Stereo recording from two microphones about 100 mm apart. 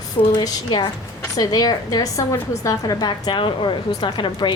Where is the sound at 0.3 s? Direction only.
45° left (ahead or behind).